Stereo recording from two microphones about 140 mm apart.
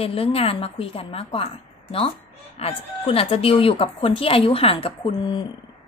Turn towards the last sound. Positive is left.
turn(degrees=35)  # may be behind; listen again after turning